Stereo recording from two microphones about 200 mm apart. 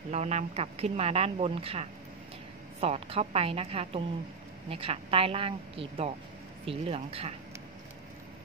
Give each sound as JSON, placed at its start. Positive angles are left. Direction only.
{"t": 0.1, "sound": "a woman's voice", "side_deg": -35}